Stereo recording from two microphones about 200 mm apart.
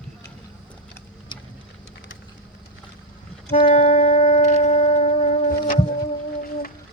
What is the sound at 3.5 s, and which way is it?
Music, 35° left (ahead or behind).